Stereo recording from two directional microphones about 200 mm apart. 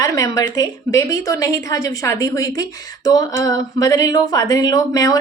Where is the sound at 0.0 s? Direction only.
15° left (ahead or behind).